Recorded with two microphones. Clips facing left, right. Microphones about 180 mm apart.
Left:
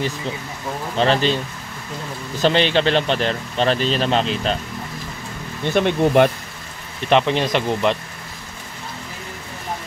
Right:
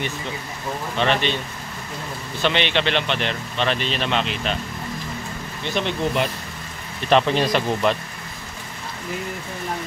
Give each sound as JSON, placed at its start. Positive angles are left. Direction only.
{"t": 0.9, "sound": "speech", "side_deg": 35}
{"t": 5.7, "sound": "speech", "side_deg": 55}
{"t": 7.1, "sound": "speech", "side_deg": 20}